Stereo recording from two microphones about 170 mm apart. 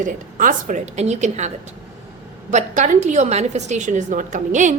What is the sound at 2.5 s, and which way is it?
A woman's voice, 45° right (ahead or behind).